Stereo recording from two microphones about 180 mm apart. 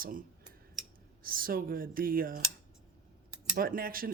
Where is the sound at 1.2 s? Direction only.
55° right (ahead or behind).